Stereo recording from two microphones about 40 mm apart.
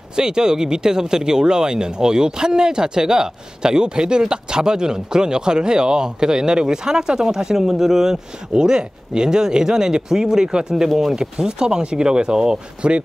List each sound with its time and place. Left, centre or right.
0.1 s speech: centre
10.9 s speech: centre
11.1 s speech: centre